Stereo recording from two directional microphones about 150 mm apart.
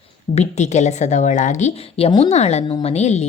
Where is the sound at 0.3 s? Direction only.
50° left (ahead or behind).